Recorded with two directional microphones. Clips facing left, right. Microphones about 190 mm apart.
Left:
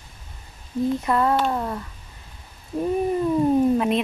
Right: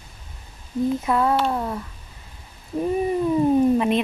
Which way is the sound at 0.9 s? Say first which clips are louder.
Even; centre (ahead or behind).